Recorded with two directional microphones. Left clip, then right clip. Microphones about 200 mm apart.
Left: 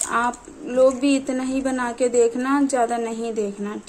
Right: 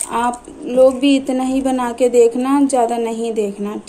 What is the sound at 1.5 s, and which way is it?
A woman's voice, 15° left (ahead or behind).